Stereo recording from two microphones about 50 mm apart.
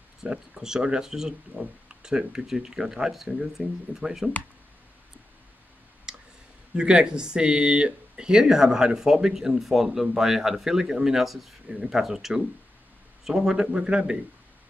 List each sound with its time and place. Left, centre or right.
0.2 s speech: centre
6.1 s clicking: centre
6.7 s speech: centre